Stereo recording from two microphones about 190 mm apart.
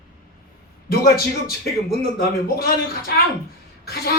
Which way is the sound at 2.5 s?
50° left (ahead or behind).